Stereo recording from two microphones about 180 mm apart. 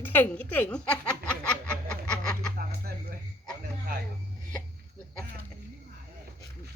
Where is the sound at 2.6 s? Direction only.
55° right (ahead or behind).